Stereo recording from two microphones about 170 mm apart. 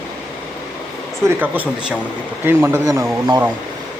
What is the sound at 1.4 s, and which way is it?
A man's voice, 10° right (ahead or behind).